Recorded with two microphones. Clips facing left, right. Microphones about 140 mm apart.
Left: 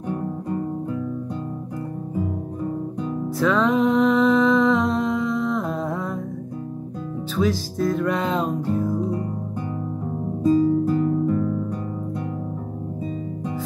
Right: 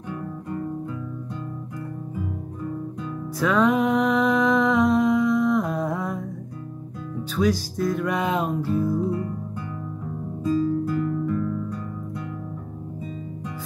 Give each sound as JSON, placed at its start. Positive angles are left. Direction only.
{"t": 3.3, "sound": "music", "side_deg": 0}
{"t": 7.3, "sound": "music", "side_deg": 0}
{"t": 8.7, "sound": "music", "side_deg": 35}
{"t": 10.9, "sound": "music", "side_deg": 30}